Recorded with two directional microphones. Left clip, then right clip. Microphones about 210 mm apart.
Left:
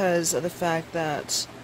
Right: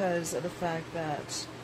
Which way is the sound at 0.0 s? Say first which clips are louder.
Left 7 dB; 35° left (ahead or behind).